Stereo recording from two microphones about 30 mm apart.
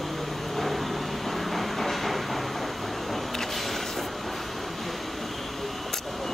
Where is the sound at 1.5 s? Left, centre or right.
Centre.